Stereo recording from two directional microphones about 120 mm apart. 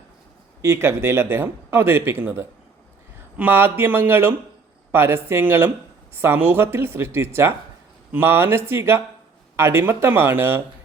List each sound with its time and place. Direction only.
0.6 s speech: 20° right (ahead or behind)